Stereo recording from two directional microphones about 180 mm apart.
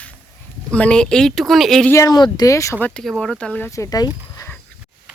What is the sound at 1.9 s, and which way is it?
Speech, 20° left (ahead or behind).